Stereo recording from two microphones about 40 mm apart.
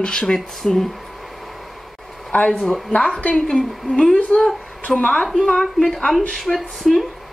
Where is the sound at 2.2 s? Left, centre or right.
Left.